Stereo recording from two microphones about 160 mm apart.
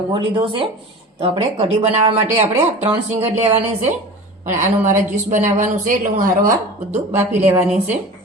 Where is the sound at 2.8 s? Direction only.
40° right (ahead or behind).